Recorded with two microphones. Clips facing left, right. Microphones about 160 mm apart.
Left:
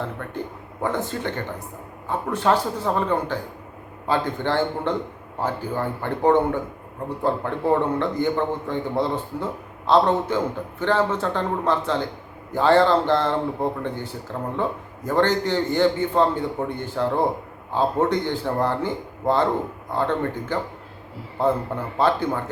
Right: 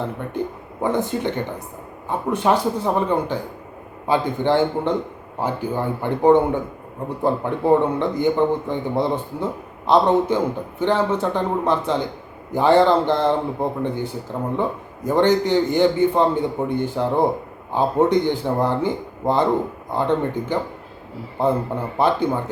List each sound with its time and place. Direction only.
0.2 s a man's voice: 15° right (ahead or behind)